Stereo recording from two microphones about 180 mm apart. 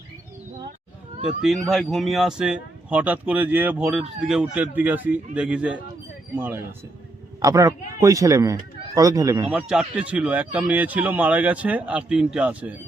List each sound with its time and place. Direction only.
1.2 s a man's voice: centre (ahead or behind); by 9.5 s 20° right (ahead or behind)
9.5 s speech: 5° right (ahead or behind)